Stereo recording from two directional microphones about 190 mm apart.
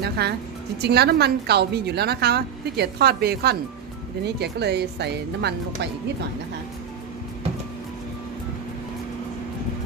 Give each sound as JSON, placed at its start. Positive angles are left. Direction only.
{"t": 0.2, "sound": "a woman's voice", "side_deg": -55}